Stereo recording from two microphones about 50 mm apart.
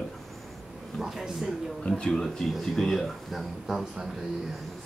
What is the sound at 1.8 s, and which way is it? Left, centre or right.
Speech, centre.